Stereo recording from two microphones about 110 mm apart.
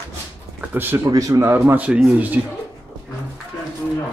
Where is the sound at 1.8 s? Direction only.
10° right (ahead or behind).